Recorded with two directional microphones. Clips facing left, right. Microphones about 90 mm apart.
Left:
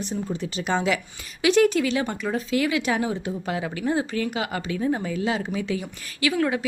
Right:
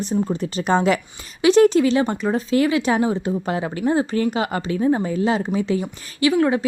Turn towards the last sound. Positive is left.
turn(degrees=-30)  # may be behind; listen again after turning